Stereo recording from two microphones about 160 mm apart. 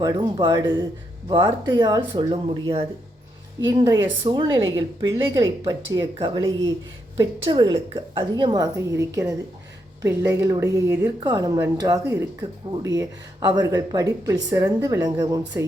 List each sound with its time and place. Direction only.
0.0 s speech: 25° right (ahead or behind)